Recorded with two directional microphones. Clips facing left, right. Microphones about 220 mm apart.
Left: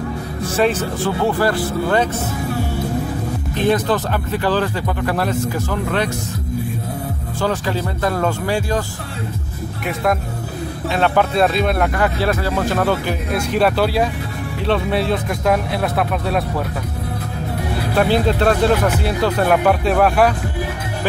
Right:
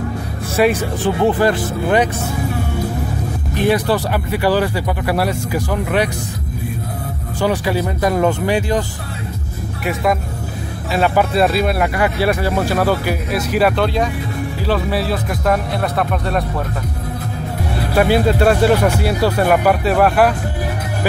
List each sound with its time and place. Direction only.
0.6 s speech: 10° right (ahead or behind)
3.5 s speech: 10° right (ahead or behind)
7.3 s speech: 15° right (ahead or behind)
10.9 s speech: 5° right (ahead or behind)
17.9 s speech: 5° right (ahead or behind)